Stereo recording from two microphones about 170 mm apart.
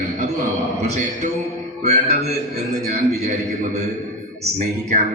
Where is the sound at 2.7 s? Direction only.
40° right (ahead or behind).